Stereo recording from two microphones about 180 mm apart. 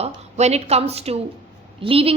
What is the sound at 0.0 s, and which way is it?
A woman's voice, 35° right (ahead or behind).